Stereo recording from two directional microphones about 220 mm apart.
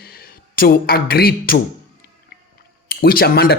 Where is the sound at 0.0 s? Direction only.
45° left (ahead or behind).